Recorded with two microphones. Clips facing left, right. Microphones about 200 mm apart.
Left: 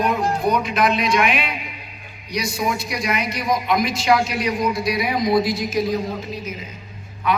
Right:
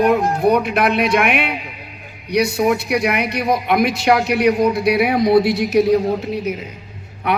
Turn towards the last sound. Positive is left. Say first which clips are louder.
# right 2 dB
turn(degrees=-65)  # may be behind; listen again after turning